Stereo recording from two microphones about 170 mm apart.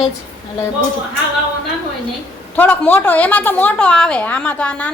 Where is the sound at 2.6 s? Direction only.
10° left (ahead or behind).